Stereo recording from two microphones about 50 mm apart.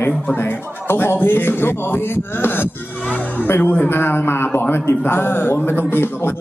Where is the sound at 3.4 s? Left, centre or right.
Left.